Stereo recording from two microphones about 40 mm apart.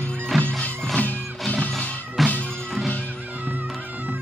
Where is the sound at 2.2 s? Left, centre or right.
Centre.